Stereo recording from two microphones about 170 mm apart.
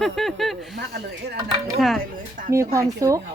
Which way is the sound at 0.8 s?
75° right (ahead or behind).